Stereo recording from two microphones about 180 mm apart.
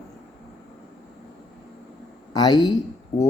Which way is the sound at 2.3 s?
20° left (ahead or behind).